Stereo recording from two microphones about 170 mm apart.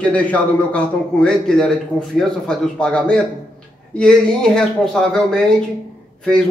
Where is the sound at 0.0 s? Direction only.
10° left (ahead or behind).